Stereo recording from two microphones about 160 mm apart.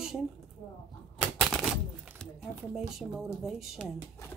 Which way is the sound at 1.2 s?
Centre (ahead or behind).